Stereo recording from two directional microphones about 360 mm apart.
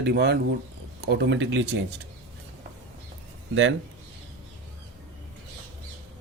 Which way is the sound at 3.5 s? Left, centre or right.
Right.